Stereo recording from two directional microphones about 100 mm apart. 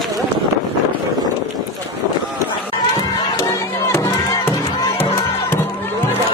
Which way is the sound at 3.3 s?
30° left (ahead or behind).